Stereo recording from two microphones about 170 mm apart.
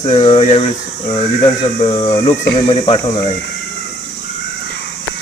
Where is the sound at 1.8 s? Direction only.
30° left (ahead or behind).